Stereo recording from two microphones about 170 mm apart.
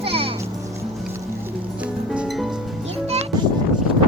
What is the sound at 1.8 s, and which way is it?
Music, 5° right (ahead or behind).